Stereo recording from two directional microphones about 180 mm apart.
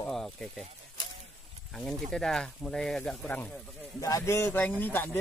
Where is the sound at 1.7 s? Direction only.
5° left (ahead or behind).